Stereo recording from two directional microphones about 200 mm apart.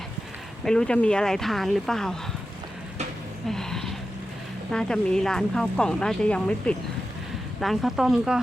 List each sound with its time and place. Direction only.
0.6 s speech: 5° left (ahead or behind)
3.5 s speech: centre (ahead or behind)